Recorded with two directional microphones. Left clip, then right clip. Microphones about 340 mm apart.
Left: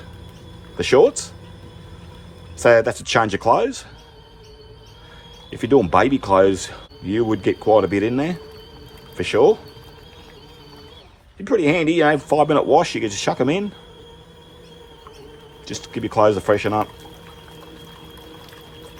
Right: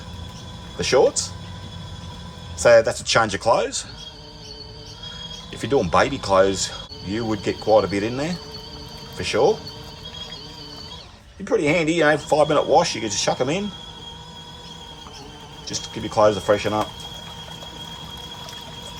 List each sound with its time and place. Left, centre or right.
0.8 s speech: left
2.6 s speech: left
5.5 s speech: left
11.4 s speech: left
15.6 s speech: left